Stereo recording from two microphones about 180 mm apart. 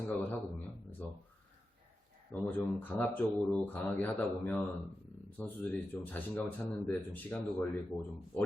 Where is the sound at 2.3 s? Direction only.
10° left (ahead or behind).